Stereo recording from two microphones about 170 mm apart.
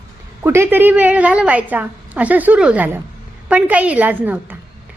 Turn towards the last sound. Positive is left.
turn(degrees=-10)  # may be behind; listen again after turning